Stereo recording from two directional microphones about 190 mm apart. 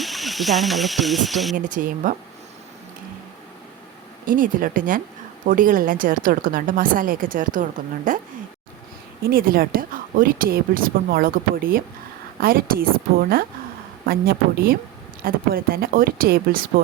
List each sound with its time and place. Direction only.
0.0 s speech: centre (ahead or behind)
1.5 s a woman's voice: 45° right (ahead or behind)
4.3 s a woman's voice: 45° right (ahead or behind)
9.2 s a woman's voice: 50° right (ahead or behind)